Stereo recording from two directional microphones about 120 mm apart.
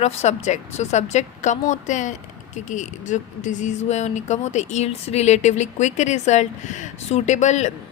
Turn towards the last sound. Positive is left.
turn(degrees=75)  # may be behind; listen again after turning